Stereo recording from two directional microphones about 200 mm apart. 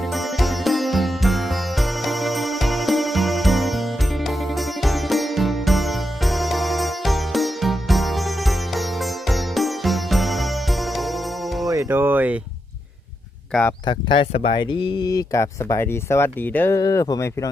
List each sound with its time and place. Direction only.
0.1 s music: centre (ahead or behind)
11.7 s music: 15° right (ahead or behind)
13.5 s speech: 10° left (ahead or behind)
13.8 s speech: 25° left (ahead or behind)